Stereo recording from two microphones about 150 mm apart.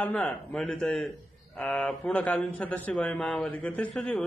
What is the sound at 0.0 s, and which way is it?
A man's voice, 10° left (ahead or behind).